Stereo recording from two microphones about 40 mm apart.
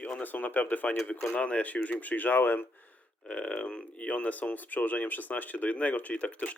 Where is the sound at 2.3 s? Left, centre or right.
Left.